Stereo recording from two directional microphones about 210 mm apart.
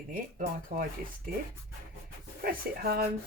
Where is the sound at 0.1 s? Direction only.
40° right (ahead or behind).